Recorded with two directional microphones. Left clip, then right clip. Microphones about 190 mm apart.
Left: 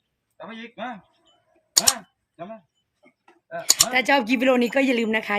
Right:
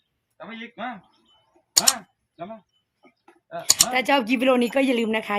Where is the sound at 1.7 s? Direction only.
Centre (ahead or behind).